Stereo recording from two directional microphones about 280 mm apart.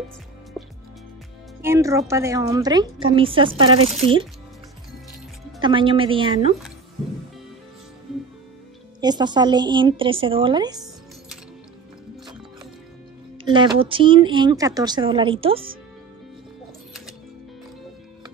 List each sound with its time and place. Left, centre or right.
0.6 s music: centre
1.6 s a woman's voice: centre
5.6 s a woman's voice: centre
9.0 s a woman's voice: centre
13.4 s a woman's voice: centre